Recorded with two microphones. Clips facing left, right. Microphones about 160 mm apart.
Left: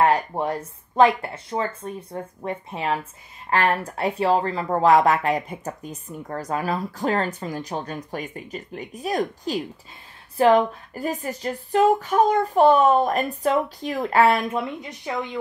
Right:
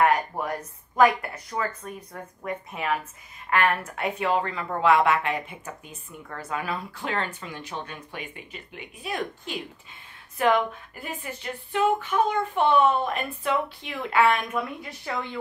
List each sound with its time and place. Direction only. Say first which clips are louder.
0.0 s speech: left 3 dB; 30° left (ahead or behind)
14.6 s speech: left 3 dB; 20° left (ahead or behind)